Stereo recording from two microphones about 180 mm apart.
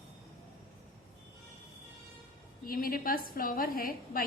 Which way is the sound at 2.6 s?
55° left (ahead or behind).